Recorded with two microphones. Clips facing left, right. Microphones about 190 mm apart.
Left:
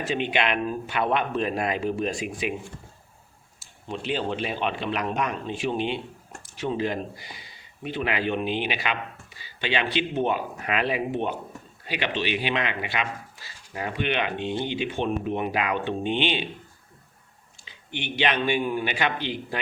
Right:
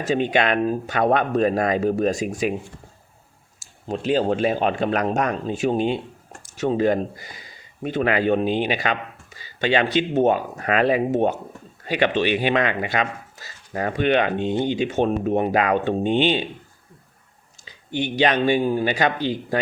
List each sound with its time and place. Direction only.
0.0 s speech: 40° right (ahead or behind)
3.8 s speech: 40° right (ahead or behind)
17.7 s speech: 40° right (ahead or behind)